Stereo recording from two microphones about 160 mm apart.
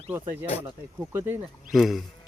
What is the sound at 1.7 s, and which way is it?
Speech, centre (ahead or behind).